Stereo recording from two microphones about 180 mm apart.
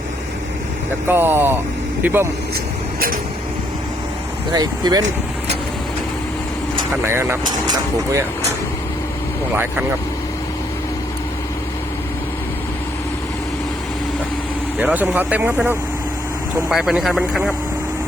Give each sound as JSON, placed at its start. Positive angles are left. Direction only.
{"t": 1.0, "sound": "speech", "side_deg": -10}
{"t": 4.5, "sound": "speech", "side_deg": -20}
{"t": 7.0, "sound": "speech", "side_deg": -15}
{"t": 14.8, "sound": "speech", "side_deg": -5}